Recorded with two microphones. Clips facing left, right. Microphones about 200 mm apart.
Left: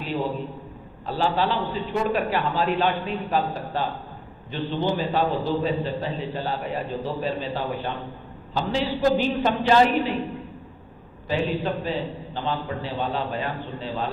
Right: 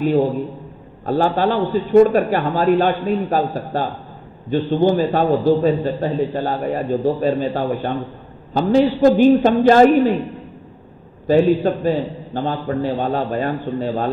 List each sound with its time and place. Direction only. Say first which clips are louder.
1.0 s a man's voice: right 7 dB; 50° right (ahead or behind)
11.2 s a man's voice: right 11 dB; 45° right (ahead or behind)